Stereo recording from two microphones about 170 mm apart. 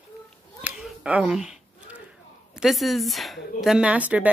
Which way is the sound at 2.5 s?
Centre (ahead or behind).